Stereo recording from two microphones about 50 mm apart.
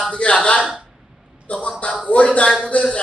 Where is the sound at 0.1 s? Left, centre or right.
Left.